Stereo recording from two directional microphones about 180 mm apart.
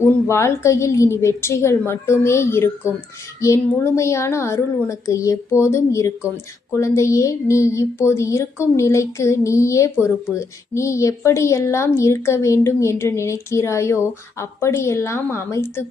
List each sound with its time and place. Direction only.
0.3 s speech: 15° left (ahead or behind)